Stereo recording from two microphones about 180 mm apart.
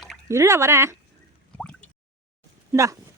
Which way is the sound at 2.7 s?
15° right (ahead or behind).